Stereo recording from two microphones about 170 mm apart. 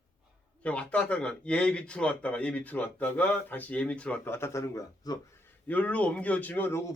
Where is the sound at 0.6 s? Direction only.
5° left (ahead or behind).